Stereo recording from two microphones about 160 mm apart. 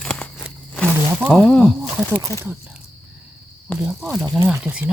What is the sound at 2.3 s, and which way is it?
Speech, 20° left (ahead or behind).